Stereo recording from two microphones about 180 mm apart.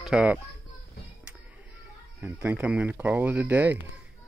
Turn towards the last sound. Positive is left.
turn(degrees=-10)  # may be behind; listen again after turning